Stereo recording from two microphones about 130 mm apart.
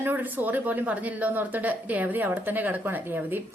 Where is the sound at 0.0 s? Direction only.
15° right (ahead or behind).